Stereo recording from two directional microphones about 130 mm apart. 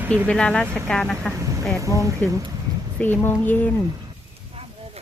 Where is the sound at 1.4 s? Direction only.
25° right (ahead or behind).